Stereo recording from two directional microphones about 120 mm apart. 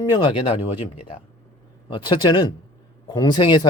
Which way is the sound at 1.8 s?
40° left (ahead or behind).